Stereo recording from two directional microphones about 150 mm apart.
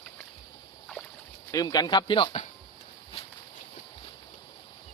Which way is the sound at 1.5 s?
25° left (ahead or behind).